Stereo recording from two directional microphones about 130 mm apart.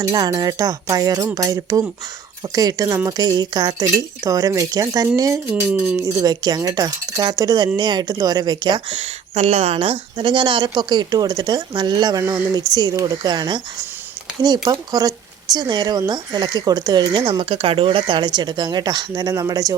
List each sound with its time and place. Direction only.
0.0 s speech: 30° right (ahead or behind)
5.5 s speech: 10° right (ahead or behind)
6.1 s speech: 30° right (ahead or behind)
9.0 s speech: 55° right (ahead or behind); by 19.7 s 30° right (ahead or behind)